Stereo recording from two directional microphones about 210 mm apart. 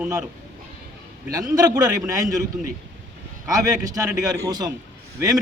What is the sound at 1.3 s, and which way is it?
Speech, 15° right (ahead or behind).